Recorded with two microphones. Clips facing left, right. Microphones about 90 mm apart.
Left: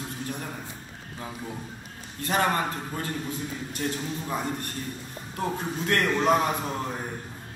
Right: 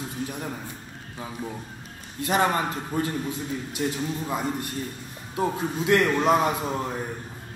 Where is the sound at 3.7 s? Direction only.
10° right (ahead or behind).